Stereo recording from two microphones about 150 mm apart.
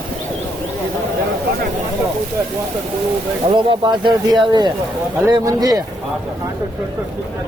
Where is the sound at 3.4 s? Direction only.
30° right (ahead or behind).